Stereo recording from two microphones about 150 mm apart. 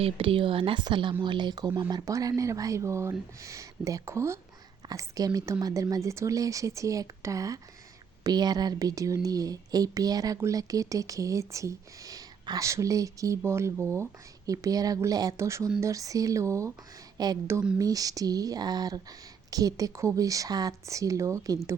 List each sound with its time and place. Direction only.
0.0 s speech: 35° right (ahead or behind); by 21.8 s 20° right (ahead or behind)